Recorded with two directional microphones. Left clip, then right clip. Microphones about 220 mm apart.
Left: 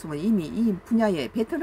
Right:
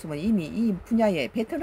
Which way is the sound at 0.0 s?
5° right (ahead or behind).